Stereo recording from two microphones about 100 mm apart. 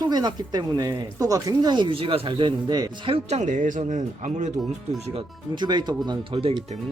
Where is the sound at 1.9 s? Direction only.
65° right (ahead or behind); by 3.1 s 45° right (ahead or behind).